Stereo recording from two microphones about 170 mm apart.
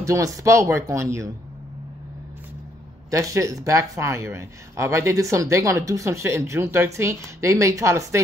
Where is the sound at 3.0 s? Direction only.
20° right (ahead or behind).